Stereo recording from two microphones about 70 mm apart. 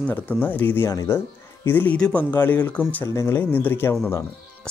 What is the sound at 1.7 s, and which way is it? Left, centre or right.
Speech, left.